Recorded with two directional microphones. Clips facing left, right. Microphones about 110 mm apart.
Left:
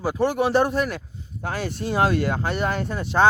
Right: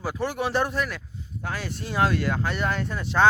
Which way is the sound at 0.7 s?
45° left (ahead or behind).